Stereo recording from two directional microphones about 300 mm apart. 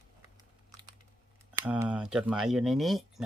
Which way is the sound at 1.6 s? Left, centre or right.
Centre.